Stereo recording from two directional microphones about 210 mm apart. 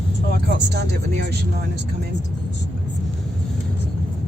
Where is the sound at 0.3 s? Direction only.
50° right (ahead or behind).